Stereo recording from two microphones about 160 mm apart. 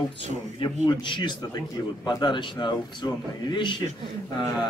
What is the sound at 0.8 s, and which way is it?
A man's voice, 30° left (ahead or behind).